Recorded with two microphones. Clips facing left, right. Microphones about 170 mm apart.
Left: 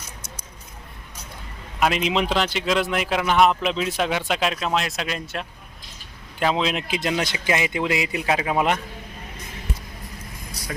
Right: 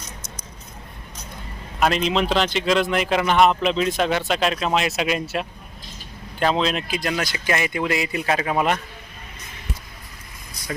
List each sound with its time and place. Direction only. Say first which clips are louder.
1.8 s speech: right 1 dB; 10° left (ahead or behind); by 5.5 s 5° right (ahead or behind)
6.4 s speech: right 1 dB; 10° left (ahead or behind)